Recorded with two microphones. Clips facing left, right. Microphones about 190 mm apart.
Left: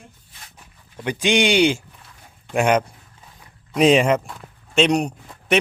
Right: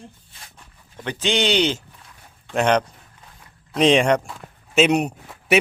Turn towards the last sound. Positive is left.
turn(degrees=-5)  # may be behind; listen again after turning